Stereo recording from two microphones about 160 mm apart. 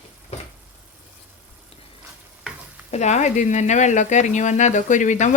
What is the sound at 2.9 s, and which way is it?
Speech, 45° left (ahead or behind).